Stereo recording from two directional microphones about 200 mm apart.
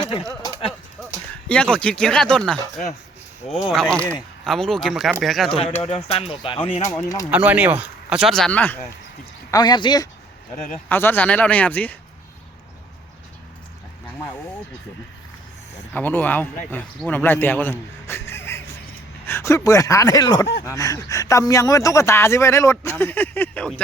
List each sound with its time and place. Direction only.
1.5 s speech: 5° left (ahead or behind)
3.7 s speech: centre (ahead or behind)
5.8 s speech: 30° left (ahead or behind)
6.9 s speech: 15° left (ahead or behind)
7.3 s speech: 5° right (ahead or behind)
9.5 s speech: 20° left (ahead or behind)
10.8 s speech: 10° left (ahead or behind)
15.9 s speech: 10° left (ahead or behind)